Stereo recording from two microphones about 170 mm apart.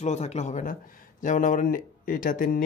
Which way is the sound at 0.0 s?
40° left (ahead or behind).